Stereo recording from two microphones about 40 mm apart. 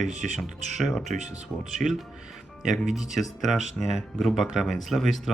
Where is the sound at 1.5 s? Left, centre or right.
Left.